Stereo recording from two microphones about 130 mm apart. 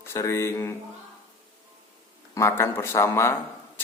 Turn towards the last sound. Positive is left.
turn(degrees=20)  # may be behind; listen again after turning